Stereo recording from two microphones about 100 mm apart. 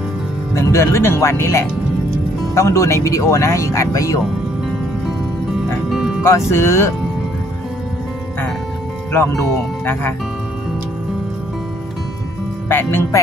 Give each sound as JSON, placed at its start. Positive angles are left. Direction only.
{"t": 0.6, "sound": "speech", "side_deg": 30}
{"t": 5.9, "sound": "music", "side_deg": -5}
{"t": 6.2, "sound": "speech", "side_deg": 25}
{"t": 12.6, "sound": "speech", "side_deg": 25}